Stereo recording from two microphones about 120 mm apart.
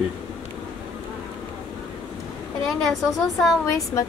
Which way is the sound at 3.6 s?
25° left (ahead or behind).